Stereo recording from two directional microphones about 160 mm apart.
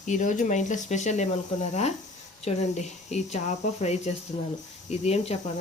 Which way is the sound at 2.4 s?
45° left (ahead or behind).